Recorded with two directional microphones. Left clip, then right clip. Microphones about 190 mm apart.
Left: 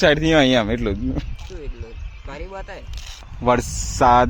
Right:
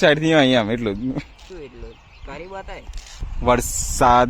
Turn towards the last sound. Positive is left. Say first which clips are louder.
# even
turn(degrees=0)  # may be behind; listen again after turning